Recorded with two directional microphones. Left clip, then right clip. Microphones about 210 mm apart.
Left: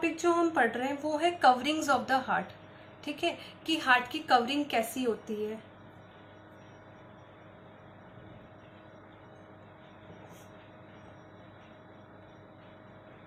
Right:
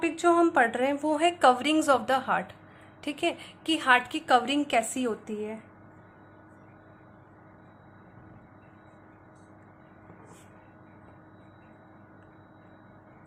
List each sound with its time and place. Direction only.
0.0 s a woman's voice: 50° right (ahead or behind)